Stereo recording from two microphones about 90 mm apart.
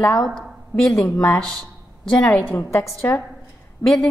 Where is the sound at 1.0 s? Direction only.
30° left (ahead or behind).